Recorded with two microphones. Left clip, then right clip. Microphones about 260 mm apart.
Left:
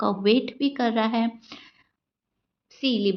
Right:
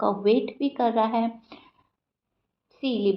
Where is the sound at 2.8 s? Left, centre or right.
Left.